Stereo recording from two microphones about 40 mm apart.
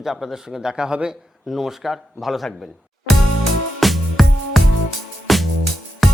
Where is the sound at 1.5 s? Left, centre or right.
Centre.